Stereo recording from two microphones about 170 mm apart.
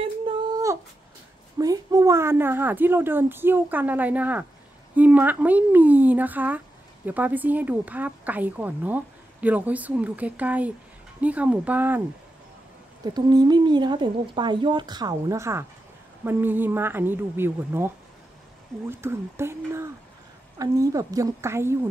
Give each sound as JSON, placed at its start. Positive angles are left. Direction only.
{"t": 1.6, "sound": "speech", "side_deg": -20}
{"t": 13.0, "sound": "a woman's voice", "side_deg": -25}